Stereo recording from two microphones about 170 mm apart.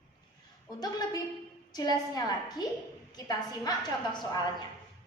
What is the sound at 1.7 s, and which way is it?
A woman's voice, 20° left (ahead or behind).